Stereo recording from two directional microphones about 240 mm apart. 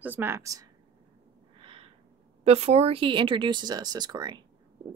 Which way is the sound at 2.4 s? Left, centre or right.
Right.